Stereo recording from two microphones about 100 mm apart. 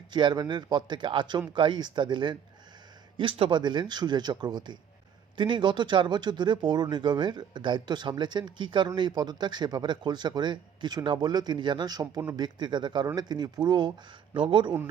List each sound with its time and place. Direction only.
0.1 s speech: 50° right (ahead or behind)
3.2 s a man's voice: 65° right (ahead or behind)
3.6 s speech: 50° right (ahead or behind)